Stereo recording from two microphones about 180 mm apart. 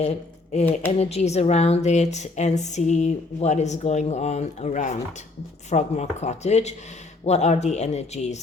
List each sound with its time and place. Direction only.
0.0 s speech: 35° left (ahead or behind)